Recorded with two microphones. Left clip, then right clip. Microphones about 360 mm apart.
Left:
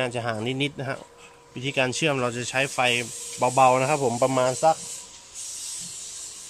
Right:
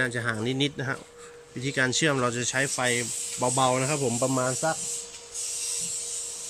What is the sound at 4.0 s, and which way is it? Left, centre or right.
Speech, left.